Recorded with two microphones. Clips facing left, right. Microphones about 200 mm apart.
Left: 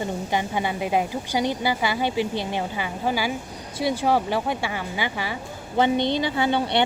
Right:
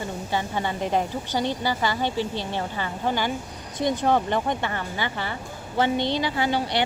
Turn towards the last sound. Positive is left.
turn(degrees=20)  # may be behind; listen again after turning